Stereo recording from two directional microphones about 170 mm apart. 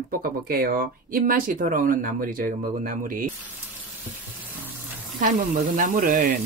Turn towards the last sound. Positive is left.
turn(degrees=-50)  # may be behind; listen again after turning